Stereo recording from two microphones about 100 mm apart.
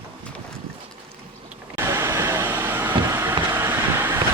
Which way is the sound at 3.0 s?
25° right (ahead or behind).